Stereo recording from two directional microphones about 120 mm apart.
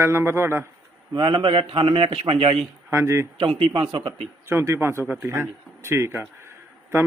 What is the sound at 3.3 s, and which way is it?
Speech, 50° right (ahead or behind).